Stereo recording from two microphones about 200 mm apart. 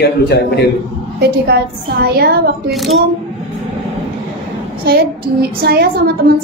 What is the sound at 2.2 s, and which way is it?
Speech, 50° right (ahead or behind).